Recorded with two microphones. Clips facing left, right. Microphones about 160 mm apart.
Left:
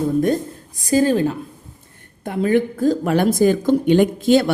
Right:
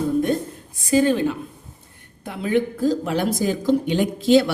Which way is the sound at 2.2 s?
50° left (ahead or behind).